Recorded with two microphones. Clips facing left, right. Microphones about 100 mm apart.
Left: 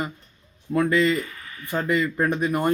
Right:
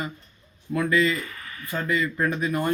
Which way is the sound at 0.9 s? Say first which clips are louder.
Left 1 dB; 20° left (ahead or behind).